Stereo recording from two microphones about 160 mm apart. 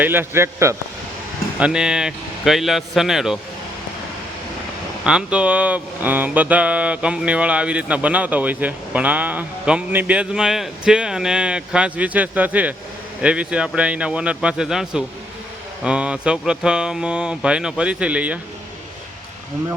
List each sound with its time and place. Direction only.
0.0 s mantra: 15° right (ahead or behind)
1.5 s mantra: 5° right (ahead or behind)
5.0 s mantra: 5° right (ahead or behind)